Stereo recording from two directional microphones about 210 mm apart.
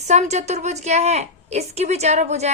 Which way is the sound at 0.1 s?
30° right (ahead or behind).